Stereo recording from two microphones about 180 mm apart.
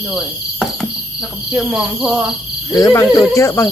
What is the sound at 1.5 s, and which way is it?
Speech, 5° right (ahead or behind).